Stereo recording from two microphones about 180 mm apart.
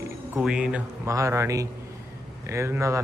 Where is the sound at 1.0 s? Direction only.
15° right (ahead or behind).